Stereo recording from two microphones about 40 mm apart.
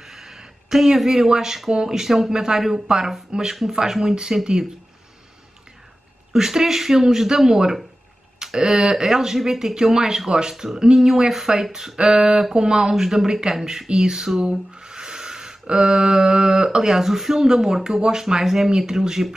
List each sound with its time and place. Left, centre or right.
0.0 s speech: centre
6.3 s speech: centre